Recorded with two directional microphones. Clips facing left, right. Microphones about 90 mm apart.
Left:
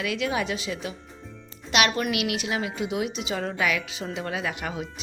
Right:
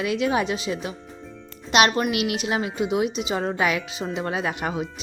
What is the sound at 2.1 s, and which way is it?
A woman's voice, 30° right (ahead or behind).